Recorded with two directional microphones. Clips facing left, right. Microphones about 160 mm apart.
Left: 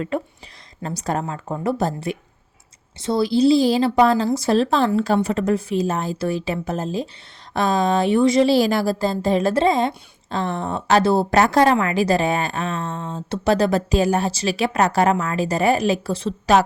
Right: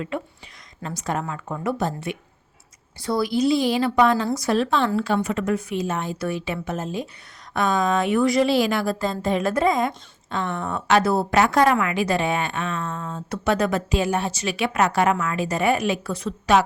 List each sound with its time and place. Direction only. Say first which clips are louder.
0.1 s a woman's voice: left 4 dB; 40° left (ahead or behind)